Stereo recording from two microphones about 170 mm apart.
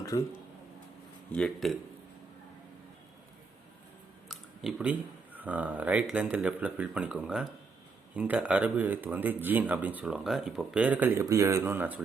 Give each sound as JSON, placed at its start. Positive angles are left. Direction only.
{"t": 0.1, "sound": "speech", "side_deg": 20}
{"t": 1.3, "sound": "speech", "side_deg": 5}
{"t": 4.3, "sound": "a sound", "side_deg": -5}
{"t": 5.4, "sound": "speech", "side_deg": -10}